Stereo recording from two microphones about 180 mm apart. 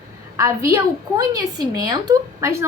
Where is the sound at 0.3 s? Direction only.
15° right (ahead or behind).